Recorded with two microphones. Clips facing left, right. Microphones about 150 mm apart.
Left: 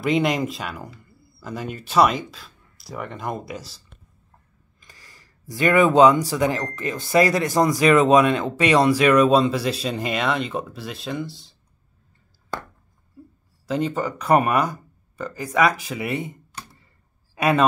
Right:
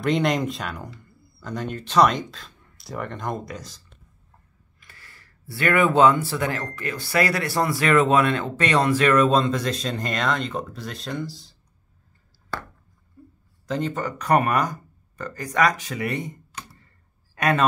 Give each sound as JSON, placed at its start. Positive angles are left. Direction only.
{"t": 0.0, "sound": "speech", "side_deg": 5}
{"t": 4.8, "sound": "speech", "side_deg": 15}
{"t": 13.7, "sound": "speech", "side_deg": 10}
{"t": 16.2, "sound": "computer keyboard", "side_deg": 30}
{"t": 17.4, "sound": "a man's voice", "side_deg": 10}